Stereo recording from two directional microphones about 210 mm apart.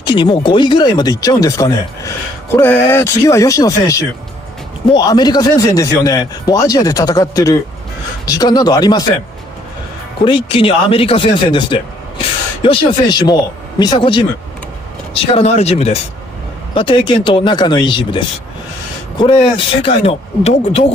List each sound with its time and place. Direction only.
0.0 s speech: 20° left (ahead or behind)
10.2 s speech: 25° left (ahead or behind)